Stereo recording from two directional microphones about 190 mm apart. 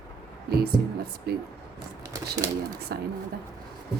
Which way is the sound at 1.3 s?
55° right (ahead or behind).